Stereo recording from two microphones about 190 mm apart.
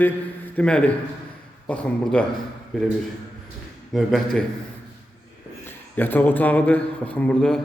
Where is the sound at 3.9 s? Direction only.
Centre (ahead or behind).